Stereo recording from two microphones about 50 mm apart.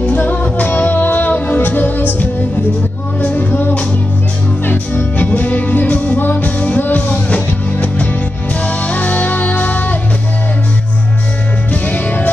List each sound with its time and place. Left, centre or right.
0.0 s music: left
11.7 s music: left